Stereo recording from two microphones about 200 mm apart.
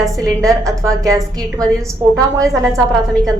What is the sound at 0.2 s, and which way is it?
Speech, 15° right (ahead or behind).